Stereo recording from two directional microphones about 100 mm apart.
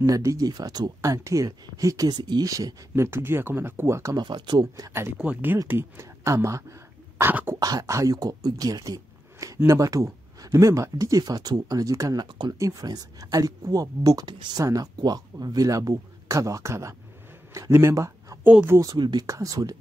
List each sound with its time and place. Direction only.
0.0 s speech: 35° right (ahead or behind)
4.2 s speech: 50° right (ahead or behind)
5.2 s speech: 15° right (ahead or behind)
7.2 s cough: 20° right (ahead or behind)
7.5 s speech: 35° right (ahead or behind)
12.3 s speech: 50° right (ahead or behind)
12.5 s speech: 35° right (ahead or behind)
14.6 s speech: 35° right (ahead or behind)
18.4 s speech: 15° right (ahead or behind)
18.9 s speech: 50° right (ahead or behind)
19.2 s speech: 35° right (ahead or behind)